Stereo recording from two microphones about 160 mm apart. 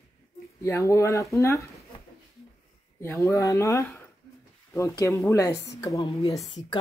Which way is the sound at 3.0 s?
15° left (ahead or behind).